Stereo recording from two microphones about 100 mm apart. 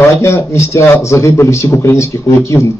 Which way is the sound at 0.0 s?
30° left (ahead or behind).